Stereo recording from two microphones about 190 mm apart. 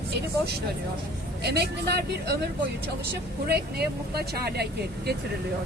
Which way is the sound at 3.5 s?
55° right (ahead or behind).